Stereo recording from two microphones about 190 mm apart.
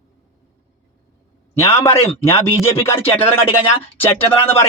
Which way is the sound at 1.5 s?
15° left (ahead or behind).